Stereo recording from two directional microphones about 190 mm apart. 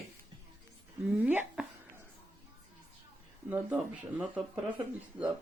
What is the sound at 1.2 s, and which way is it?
Speech, 5° right (ahead or behind).